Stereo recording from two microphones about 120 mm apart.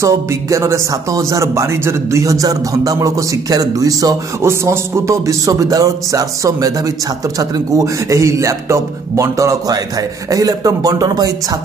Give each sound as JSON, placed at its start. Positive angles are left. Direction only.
{"t": 0.0, "sound": "speech", "side_deg": -25}